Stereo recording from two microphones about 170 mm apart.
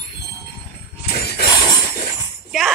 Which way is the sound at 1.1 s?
65° left (ahead or behind).